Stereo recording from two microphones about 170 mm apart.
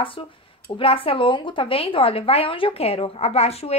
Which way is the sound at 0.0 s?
30° left (ahead or behind).